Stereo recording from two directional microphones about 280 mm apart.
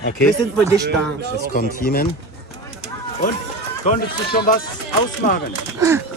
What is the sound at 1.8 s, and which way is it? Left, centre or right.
Speech, left.